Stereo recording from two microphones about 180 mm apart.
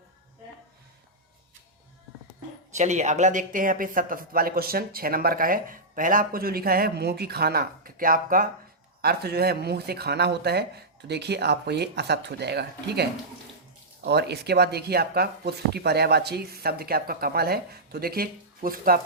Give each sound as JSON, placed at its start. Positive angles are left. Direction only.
{"t": 2.7, "sound": "speech", "side_deg": -40}
{"t": 9.0, "sound": "speech", "side_deg": -60}